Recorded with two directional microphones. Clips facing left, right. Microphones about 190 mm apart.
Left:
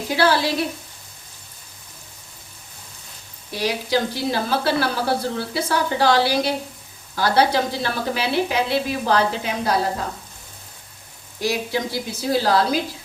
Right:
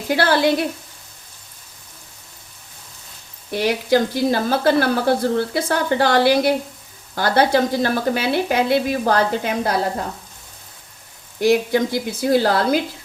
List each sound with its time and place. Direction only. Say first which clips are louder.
0.2 s a woman's voice: right 2 dB; 55° right (ahead or behind)
3.5 s speech: right 5 dB; 55° right (ahead or behind)
11.3 s a woman's voice: right 7 dB; 55° right (ahead or behind)